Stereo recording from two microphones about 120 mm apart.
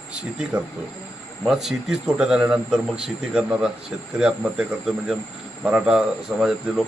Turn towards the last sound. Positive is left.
turn(degrees=-5)  # may be behind; listen again after turning